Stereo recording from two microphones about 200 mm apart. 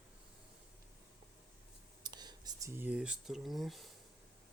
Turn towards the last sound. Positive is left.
turn(degrees=0)  # may be behind; listen again after turning